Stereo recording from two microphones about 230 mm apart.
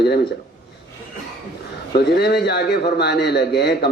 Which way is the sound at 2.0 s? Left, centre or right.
Left.